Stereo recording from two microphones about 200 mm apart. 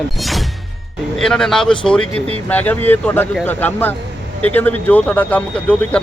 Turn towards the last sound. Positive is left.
turn(degrees=5)  # may be behind; listen again after turning